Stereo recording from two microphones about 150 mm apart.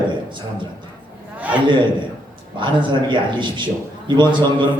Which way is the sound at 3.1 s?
30° right (ahead or behind).